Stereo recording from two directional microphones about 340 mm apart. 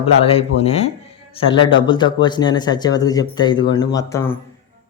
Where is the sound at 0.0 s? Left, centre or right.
Centre.